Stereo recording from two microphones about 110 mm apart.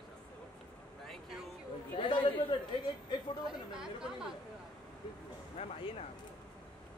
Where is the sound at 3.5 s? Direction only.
5° right (ahead or behind).